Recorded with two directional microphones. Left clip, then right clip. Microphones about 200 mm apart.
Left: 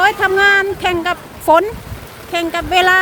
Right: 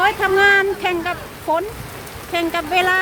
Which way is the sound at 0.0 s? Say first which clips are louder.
Left 3 dB; 10° left (ahead or behind).